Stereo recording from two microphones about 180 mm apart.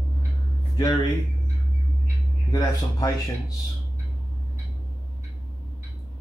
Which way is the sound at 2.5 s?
20° left (ahead or behind).